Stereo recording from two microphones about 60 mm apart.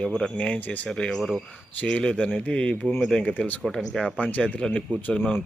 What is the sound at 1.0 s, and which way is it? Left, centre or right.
Speech, centre.